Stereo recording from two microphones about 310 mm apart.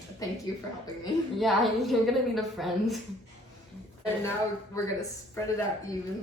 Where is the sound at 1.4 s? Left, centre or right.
Centre.